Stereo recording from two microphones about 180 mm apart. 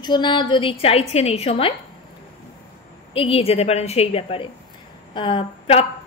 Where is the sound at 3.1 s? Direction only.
30° left (ahead or behind).